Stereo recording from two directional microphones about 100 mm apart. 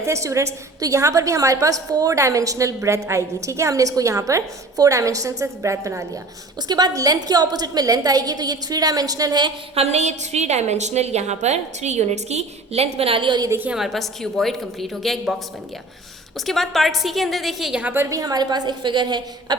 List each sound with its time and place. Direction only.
0.0 s a woman's voice: 30° right (ahead or behind)
6.6 s a woman's voice: 45° right (ahead or behind)
9.7 s a woman's voice: 90° right; by 13.4 s 55° right (ahead or behind)
13.7 s a woman's voice: 5° right (ahead or behind)
16.5 s a woman's voice: centre (ahead or behind)
17.8 s a woman's voice: 25° right (ahead or behind)
18.2 s a woman's voice: 40° right (ahead or behind)